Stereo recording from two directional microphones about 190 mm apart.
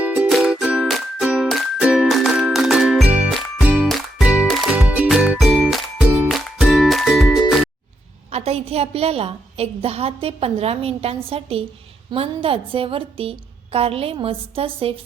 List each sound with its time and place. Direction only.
0.0 s music: 5° right (ahead or behind)
8.3 s a woman's voice: 35° right (ahead or behind)